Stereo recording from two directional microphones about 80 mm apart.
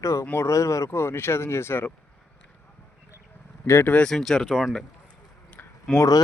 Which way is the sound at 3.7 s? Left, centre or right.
Left.